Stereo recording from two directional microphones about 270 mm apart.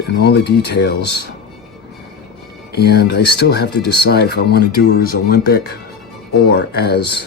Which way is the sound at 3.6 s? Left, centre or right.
Left.